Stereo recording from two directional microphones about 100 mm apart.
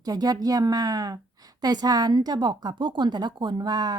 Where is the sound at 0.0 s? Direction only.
40° right (ahead or behind).